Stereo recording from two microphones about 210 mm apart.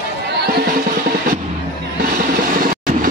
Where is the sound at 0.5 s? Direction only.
45° right (ahead or behind).